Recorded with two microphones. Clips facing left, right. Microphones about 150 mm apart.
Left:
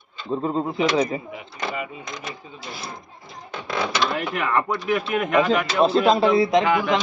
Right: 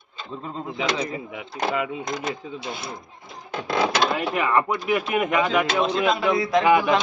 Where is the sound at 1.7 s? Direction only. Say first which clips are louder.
Right 5 dB; 85° right.